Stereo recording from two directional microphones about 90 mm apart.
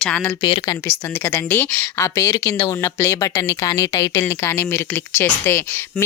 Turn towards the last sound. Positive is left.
turn(degrees=30)  # may be behind; listen again after turning